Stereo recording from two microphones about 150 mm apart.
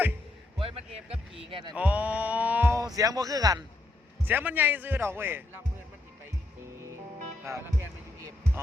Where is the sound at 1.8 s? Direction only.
10° right (ahead or behind); by 3.6 s 25° right (ahead or behind).